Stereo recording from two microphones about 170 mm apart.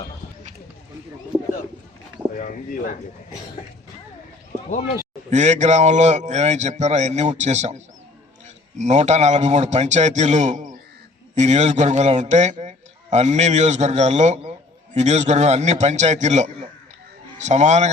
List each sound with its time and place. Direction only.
2.4 s speech: 55° left (ahead or behind)
5.3 s a man's voice: 45° right (ahead or behind)
8.8 s a man's voice: 45° right (ahead or behind)